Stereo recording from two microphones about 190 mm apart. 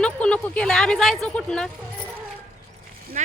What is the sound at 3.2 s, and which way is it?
Speech, 40° right (ahead or behind).